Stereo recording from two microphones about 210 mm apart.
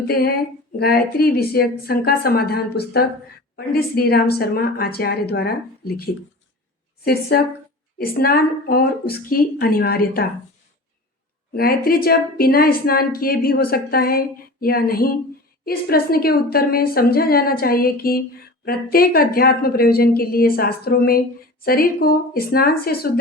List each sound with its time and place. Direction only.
0.1 s a woman's voice: 45° left (ahead or behind)
7.0 s a woman's voice: 45° left (ahead or behind)
11.5 s a woman's voice: 45° left (ahead or behind)